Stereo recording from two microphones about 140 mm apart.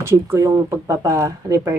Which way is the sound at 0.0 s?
20° right (ahead or behind).